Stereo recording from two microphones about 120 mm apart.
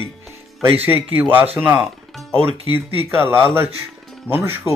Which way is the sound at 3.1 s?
20° right (ahead or behind).